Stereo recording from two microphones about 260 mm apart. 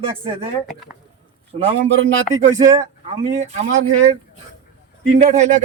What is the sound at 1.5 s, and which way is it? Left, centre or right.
Speech, right.